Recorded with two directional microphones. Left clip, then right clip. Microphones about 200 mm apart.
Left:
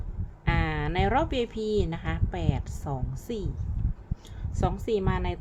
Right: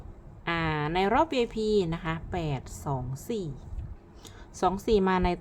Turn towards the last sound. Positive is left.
turn(degrees=-20)  # may be behind; listen again after turning